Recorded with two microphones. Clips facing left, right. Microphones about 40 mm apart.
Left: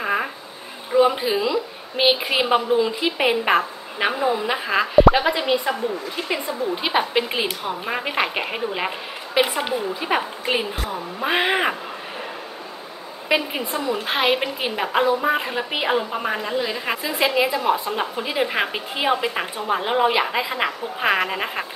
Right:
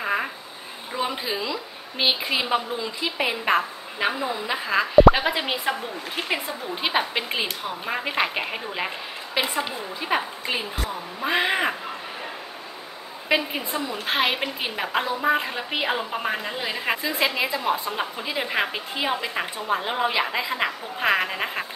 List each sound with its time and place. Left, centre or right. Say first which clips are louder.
0.0 s a sound: left 2 dB; centre
0.9 s a woman's voice: left 10 dB; centre
5.0 s a woman's voice: left 1 dB; centre
6.7 s a woman's voice: left 3 dB; centre
9.4 s a woman's voice: left 5 dB; left
9.9 s a woman's voice: left 2 dB; centre
13.3 s a woman's voice: left 2 dB; centre